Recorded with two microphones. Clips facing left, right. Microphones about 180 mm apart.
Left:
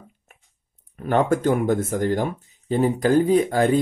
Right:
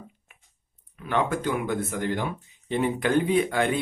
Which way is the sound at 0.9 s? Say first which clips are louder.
Left 6 dB; 45° left (ahead or behind).